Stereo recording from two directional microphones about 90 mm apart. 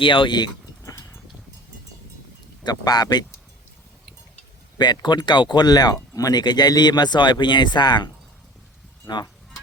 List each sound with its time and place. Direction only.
0.0 s speech: 70° left (ahead or behind); by 0.9 s 50° left (ahead or behind)
2.6 s speech: 50° left (ahead or behind)
4.8 s speech: 55° left (ahead or behind)